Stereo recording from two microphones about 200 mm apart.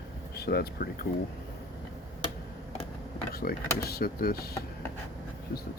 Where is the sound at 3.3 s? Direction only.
50° left (ahead or behind).